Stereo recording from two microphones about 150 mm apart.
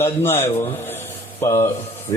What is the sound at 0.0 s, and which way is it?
A man's voice, 15° left (ahead or behind).